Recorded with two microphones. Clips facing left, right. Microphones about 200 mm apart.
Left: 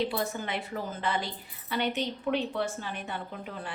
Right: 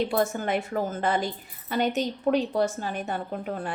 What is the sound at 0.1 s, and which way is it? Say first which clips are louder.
A woman's voice: right 7 dB; 45° right (ahead or behind).